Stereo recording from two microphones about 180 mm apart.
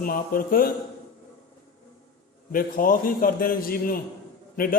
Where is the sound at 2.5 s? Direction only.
50° left (ahead or behind).